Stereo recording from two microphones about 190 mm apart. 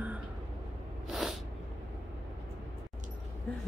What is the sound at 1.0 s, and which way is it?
Sneeze, centre (ahead or behind).